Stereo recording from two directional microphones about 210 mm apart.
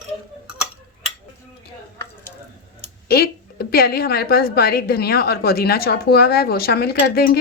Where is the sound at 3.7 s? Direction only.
45° left (ahead or behind).